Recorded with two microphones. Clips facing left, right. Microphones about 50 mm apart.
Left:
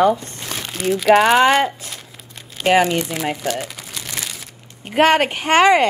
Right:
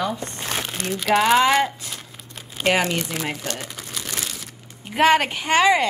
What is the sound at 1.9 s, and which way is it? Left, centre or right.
Crumpling, centre.